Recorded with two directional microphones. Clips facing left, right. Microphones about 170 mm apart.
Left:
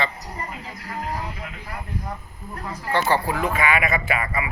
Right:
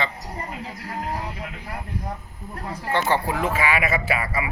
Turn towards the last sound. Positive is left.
turn(degrees=-30)  # may be behind; listen again after turning